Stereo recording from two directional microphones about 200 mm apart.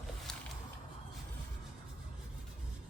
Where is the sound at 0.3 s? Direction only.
Centre (ahead or behind).